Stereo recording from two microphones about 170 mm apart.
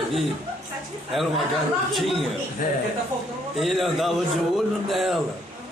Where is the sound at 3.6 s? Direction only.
Centre (ahead or behind).